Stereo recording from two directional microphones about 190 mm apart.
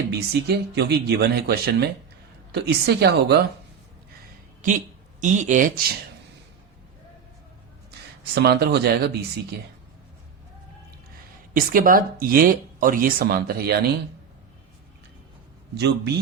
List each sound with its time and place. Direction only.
0.1 s speech: 60° right (ahead or behind)
5.2 s speech: 40° right (ahead or behind)
8.4 s speech: 55° right (ahead or behind)
11.5 s speech: 50° right (ahead or behind)
15.7 s speech: 60° right (ahead or behind)